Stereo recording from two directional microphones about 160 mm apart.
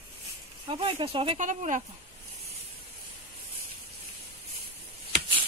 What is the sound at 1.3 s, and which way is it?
Speech, 50° right (ahead or behind).